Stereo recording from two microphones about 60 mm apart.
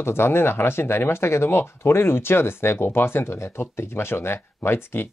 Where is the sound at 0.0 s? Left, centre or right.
Left.